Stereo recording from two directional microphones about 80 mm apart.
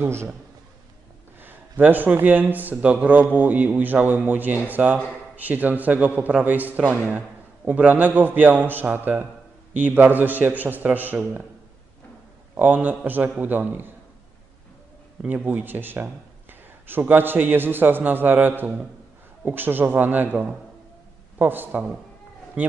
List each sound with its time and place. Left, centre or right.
0.0 s a man's voice: right
1.4 s a man's voice: right
12.5 s a man's voice: right
15.2 s a man's voice: centre
21.4 s a man's voice: right